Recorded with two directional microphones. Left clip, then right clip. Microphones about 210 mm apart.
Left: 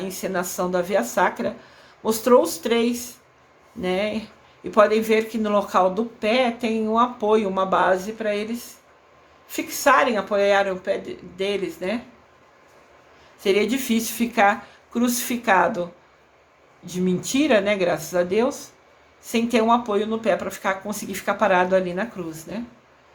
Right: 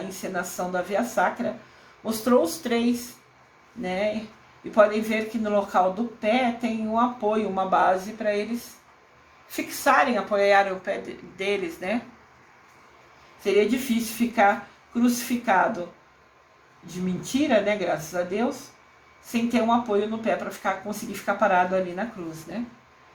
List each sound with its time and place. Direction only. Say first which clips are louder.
0.2 s speech: left 4 dB; 35° left (ahead or behind)
9.8 s speech: left 3 dB; 30° left (ahead or behind)
13.4 s speech: left 1 dB; 35° left (ahead or behind)
16.8 s speech: left 8 dB; 35° left (ahead or behind)